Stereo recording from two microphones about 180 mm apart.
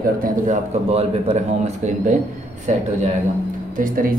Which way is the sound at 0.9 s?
35° right (ahead or behind).